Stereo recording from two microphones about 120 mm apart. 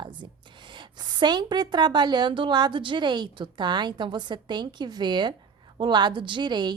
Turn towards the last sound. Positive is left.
turn(degrees=-40)  # may be behind; listen again after turning